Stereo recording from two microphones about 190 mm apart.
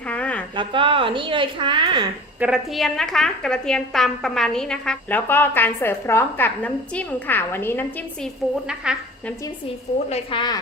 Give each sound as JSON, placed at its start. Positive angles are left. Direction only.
{"t": 0.1, "sound": "a sound", "side_deg": 5}
{"t": 0.5, "sound": "a woman's voice", "side_deg": -25}
{"t": 2.4, "sound": "speech", "side_deg": 0}
{"t": 8.6, "sound": "speech", "side_deg": -5}
{"t": 9.6, "sound": "a woman's voice", "side_deg": 30}